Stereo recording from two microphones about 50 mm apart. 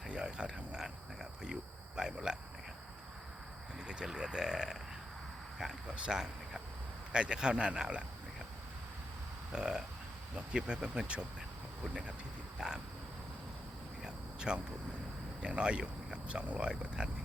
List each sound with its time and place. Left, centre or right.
0.1 s speech: centre
3.8 s speech: centre
5.9 s speech: centre
9.5 s speech: centre
12.5 s a sound: centre
14.0 s cricket: centre
15.4 s speech: centre